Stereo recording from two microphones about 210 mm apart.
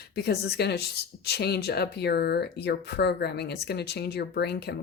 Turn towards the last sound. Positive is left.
turn(degrees=50)  # may be behind; listen again after turning